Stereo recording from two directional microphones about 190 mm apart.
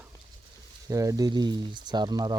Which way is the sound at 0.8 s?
15° right (ahead or behind).